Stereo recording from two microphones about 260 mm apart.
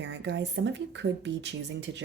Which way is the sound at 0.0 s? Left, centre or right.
Right.